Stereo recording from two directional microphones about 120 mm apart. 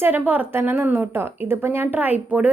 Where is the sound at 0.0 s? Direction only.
15° right (ahead or behind).